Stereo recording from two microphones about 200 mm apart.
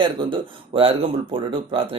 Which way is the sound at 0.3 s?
25° right (ahead or behind).